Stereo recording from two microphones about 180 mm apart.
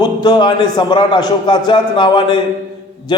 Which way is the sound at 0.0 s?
25° left (ahead or behind).